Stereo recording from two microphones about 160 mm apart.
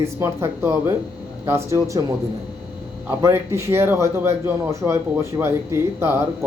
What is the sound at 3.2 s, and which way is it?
Speech, 15° right (ahead or behind).